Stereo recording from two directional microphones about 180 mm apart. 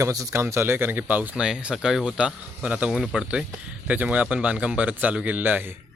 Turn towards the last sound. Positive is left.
turn(degrees=-10)  # may be behind; listen again after turning